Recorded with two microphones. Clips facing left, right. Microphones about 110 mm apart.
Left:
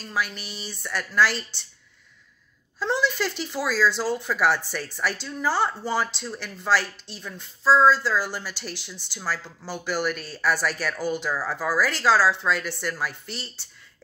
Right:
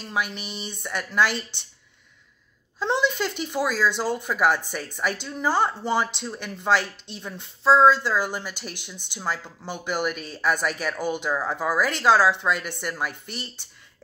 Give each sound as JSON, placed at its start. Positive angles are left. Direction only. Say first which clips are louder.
{"t": 0.0, "sound": "speech", "louder": "right 1 dB", "side_deg": -20}
{"t": 2.8, "sound": "speech", "louder": "right 1 dB", "side_deg": -20}